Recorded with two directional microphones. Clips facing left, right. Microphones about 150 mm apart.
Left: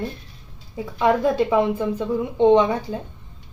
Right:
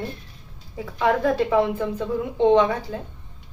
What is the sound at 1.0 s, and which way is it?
A woman's voice, 20° left (ahead or behind).